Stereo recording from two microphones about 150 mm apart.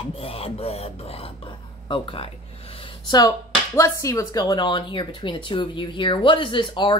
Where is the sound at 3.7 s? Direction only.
20° left (ahead or behind).